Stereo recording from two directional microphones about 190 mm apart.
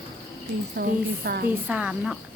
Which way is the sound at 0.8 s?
55° right (ahead or behind).